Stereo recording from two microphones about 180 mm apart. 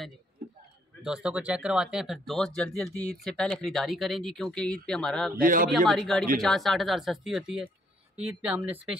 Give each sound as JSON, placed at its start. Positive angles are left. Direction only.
{"t": 1.0, "sound": "speech", "side_deg": -5}
{"t": 5.3, "sound": "a man's voice", "side_deg": -50}
{"t": 5.9, "sound": "speech", "side_deg": 0}